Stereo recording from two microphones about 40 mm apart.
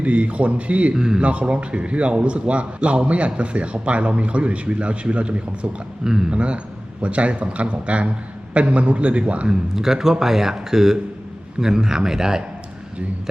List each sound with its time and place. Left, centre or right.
0.0 s a man's voice: right
0.9 s speech: centre
1.2 s a man's voice: right
6.1 s speech: centre
6.3 s a man's voice: right
9.5 s speech: centre